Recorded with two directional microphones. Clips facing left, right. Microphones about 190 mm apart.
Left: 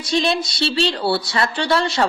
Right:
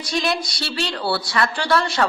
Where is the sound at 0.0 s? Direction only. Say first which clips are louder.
Left 3 dB; 25° left (ahead or behind).